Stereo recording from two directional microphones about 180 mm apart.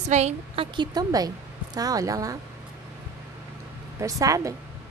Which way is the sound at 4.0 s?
20° right (ahead or behind).